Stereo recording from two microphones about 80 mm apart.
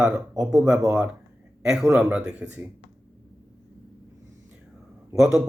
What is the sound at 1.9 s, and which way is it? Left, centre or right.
Speech, centre.